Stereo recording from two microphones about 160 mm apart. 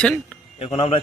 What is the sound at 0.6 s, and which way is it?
Speech, 40° left (ahead or behind).